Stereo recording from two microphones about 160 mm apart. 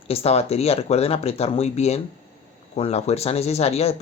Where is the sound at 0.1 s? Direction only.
40° left (ahead or behind).